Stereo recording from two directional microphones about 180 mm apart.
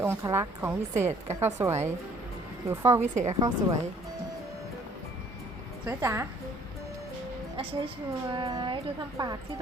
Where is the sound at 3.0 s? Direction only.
40° right (ahead or behind).